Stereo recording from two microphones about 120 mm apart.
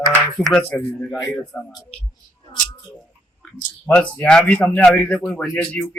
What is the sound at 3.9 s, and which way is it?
Speech, 10° left (ahead or behind).